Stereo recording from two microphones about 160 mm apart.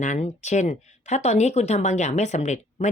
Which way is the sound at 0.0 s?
50° left (ahead or behind).